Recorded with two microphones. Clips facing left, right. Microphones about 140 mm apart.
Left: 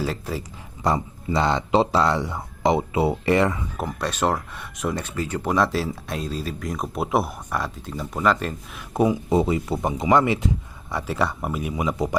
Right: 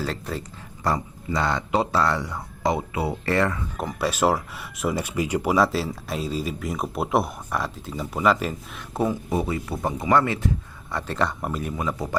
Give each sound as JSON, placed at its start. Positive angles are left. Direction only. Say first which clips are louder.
{"t": 0.0, "sound": "speech", "louder": "left 2 dB", "side_deg": 5}
{"t": 0.9, "sound": "speech", "louder": "left 2 dB", "side_deg": 25}
{"t": 3.8, "sound": "speech", "louder": "right 4 dB", "side_deg": 0}
{"t": 8.9, "sound": "speech", "louder": "left 4 dB", "side_deg": 15}